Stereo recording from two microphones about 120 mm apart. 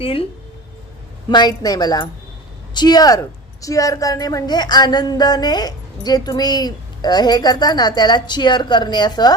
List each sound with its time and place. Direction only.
0.0 s speech: 50° left (ahead or behind)
1.3 s a woman's voice: 35° left (ahead or behind)